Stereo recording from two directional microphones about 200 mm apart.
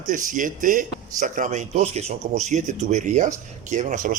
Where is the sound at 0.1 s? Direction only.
40° right (ahead or behind).